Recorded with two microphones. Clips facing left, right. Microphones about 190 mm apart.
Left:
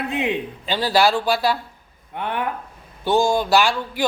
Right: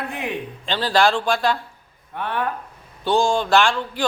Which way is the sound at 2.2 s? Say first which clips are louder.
Even; 15° left (ahead or behind).